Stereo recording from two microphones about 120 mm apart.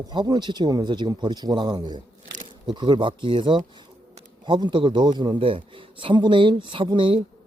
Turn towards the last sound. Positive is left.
turn(degrees=-45)  # may be behind; listen again after turning